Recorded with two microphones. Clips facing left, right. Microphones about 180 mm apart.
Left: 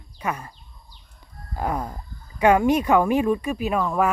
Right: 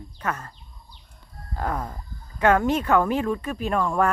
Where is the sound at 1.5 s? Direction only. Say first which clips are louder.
Left 2 dB; 10° left (ahead or behind).